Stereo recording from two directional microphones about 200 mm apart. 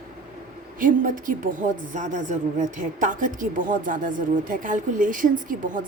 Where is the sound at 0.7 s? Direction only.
45° right (ahead or behind).